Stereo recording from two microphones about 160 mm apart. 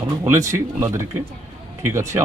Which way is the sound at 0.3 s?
20° right (ahead or behind).